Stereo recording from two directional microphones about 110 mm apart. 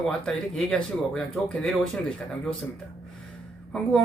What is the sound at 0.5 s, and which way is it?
Speech, 10° left (ahead or behind).